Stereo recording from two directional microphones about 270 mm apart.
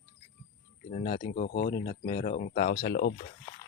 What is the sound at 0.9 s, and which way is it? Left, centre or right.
Speech, left.